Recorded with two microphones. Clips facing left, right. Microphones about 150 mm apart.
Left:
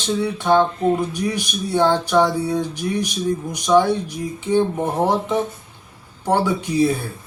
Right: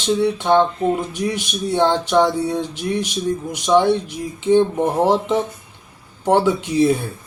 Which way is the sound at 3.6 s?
20° right (ahead or behind).